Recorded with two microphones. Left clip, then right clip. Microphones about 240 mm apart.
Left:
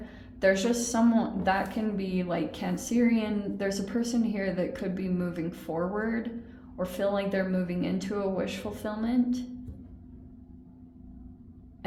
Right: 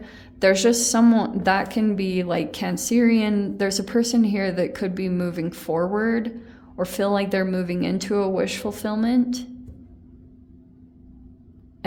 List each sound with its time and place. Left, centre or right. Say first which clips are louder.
0.0 s a woman's voice: right 6 dB; right